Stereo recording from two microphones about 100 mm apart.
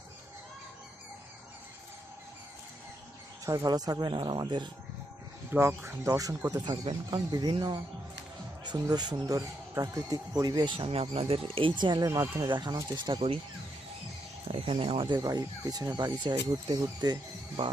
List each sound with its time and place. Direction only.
3.4 s speech: 40° right (ahead or behind)
5.5 s speech: 25° right (ahead or behind)
6.5 s speech: 45° right (ahead or behind)
10.8 s speech: 75° right (ahead or behind)
11.8 s speech: 50° right (ahead or behind)
12.0 s speech: 35° right (ahead or behind)
13.1 s speech: 70° right (ahead or behind)
14.4 s speech: 70° right (ahead or behind); by 15.2 s 55° right (ahead or behind)
15.2 s speech: 40° right (ahead or behind)